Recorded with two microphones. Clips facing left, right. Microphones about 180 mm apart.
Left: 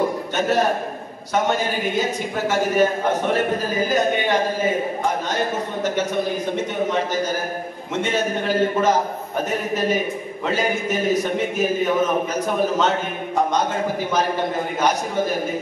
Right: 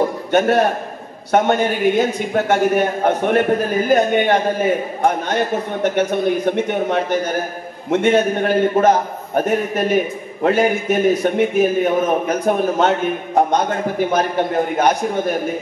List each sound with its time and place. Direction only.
0.3 s a man's voice: 60° right (ahead or behind)
14.8 s a man's voice: 55° right (ahead or behind)